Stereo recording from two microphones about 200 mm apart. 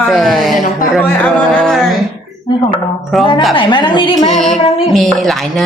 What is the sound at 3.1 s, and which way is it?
Speech, centre (ahead or behind).